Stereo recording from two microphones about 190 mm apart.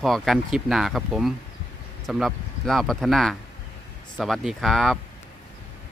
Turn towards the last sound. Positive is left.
turn(degrees=0)  # may be behind; listen again after turning